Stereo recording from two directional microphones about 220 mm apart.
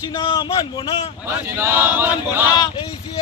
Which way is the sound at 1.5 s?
10° right (ahead or behind).